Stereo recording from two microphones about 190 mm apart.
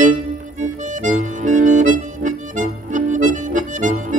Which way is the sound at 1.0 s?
40° right (ahead or behind).